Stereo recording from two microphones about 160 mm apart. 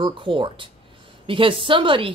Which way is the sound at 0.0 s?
30° right (ahead or behind).